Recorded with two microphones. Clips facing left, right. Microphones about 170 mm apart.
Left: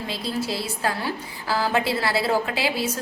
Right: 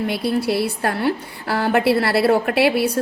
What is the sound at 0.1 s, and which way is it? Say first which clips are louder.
A woman's voice: right 7 dB; 70° right (ahead or behind).